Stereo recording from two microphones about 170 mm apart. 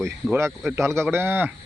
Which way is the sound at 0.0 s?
15° right (ahead or behind).